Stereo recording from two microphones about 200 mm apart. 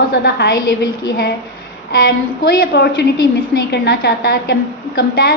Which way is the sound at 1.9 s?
50° left (ahead or behind).